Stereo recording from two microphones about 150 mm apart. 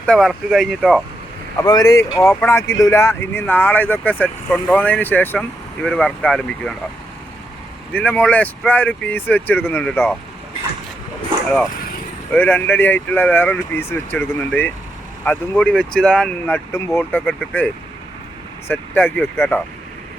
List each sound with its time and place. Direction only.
0.0 s speech: 5° left (ahead or behind)
1.6 s speech: 25° left (ahead or behind); by 6.7 s 5° left (ahead or behind)
7.9 s speech: 10° left (ahead or behind)
12.3 s speech: 10° left (ahead or behind)
16.7 s speech: 15° left (ahead or behind)
18.7 s speech: 10° left (ahead or behind)